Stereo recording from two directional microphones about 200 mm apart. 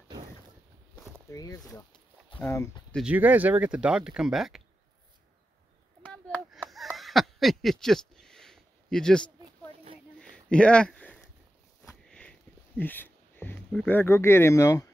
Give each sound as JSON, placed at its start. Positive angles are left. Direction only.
{"t": 1.3, "sound": "speech", "side_deg": 15}
{"t": 3.0, "sound": "speech", "side_deg": -5}
{"t": 6.0, "sound": "a sound", "side_deg": 5}
{"t": 12.1, "sound": "sniff", "side_deg": 5}